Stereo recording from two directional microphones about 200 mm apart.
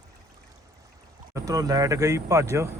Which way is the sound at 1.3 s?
20° right (ahead or behind).